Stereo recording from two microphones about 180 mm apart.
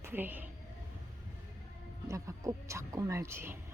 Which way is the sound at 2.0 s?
15° right (ahead or behind).